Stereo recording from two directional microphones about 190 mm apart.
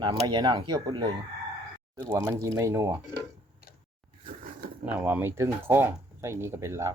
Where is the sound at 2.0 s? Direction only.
20° right (ahead or behind).